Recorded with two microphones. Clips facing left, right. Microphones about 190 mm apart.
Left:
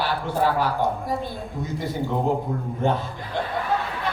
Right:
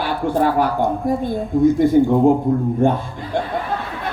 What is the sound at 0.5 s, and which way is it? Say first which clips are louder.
Female singing: right 5 dB; 50° right (ahead or behind).